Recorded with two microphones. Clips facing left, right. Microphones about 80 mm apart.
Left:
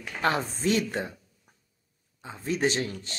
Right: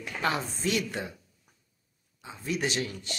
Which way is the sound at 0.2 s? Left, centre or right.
Left.